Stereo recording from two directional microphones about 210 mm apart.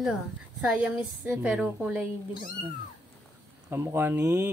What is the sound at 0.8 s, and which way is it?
Speech, 5° right (ahead or behind).